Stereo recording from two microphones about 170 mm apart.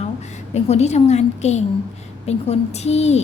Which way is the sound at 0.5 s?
40° left (ahead or behind).